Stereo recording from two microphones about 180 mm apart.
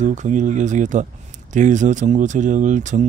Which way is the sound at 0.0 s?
40° right (ahead or behind).